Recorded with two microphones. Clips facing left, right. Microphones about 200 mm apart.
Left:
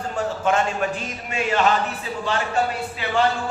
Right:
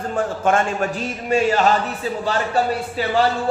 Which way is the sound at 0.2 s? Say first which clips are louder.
Right 2 dB; 50° right (ahead or behind).